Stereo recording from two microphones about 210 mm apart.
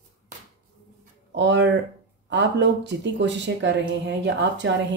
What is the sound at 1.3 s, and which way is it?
Speech, 60° right (ahead or behind).